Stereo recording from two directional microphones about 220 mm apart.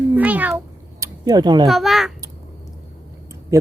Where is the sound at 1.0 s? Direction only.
15° right (ahead or behind).